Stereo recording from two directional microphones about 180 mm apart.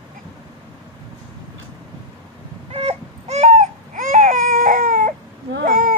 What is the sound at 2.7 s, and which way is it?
Baby cry, 35° right (ahead or behind).